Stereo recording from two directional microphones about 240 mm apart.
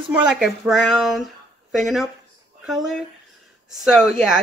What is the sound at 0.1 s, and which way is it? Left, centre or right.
Speech, centre.